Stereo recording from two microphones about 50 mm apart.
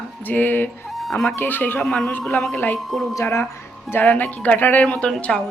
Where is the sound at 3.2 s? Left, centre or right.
Left.